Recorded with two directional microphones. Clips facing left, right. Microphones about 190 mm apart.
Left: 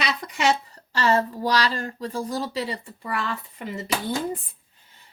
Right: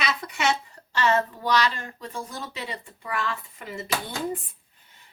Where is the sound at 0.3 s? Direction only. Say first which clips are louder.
Left 5 dB; 35° left (ahead or behind).